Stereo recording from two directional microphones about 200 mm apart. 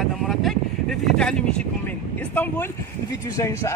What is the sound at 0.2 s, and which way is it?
Speech, centre (ahead or behind).